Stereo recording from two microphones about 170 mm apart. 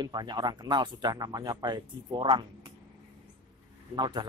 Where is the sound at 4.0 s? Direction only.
25° right (ahead or behind).